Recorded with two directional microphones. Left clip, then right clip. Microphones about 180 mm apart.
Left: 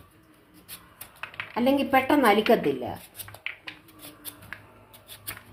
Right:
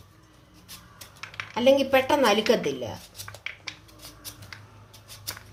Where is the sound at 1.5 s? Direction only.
15° left (ahead or behind).